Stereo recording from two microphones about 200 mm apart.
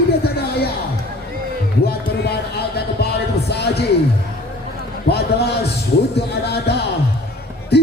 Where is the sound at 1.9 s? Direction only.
55° left (ahead or behind).